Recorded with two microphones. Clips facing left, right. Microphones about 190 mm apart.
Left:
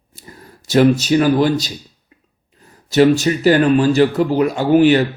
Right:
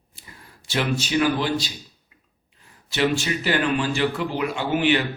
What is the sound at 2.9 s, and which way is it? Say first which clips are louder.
A man's voice: left 10 dB; 40° left (ahead or behind).